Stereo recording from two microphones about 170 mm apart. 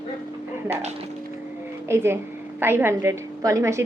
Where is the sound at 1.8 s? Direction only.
15° right (ahead or behind).